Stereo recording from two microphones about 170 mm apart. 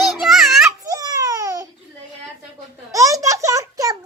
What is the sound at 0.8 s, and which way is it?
Babbling, 20° right (ahead or behind).